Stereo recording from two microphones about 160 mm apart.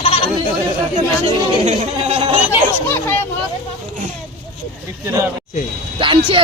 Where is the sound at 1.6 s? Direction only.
40° right (ahead or behind).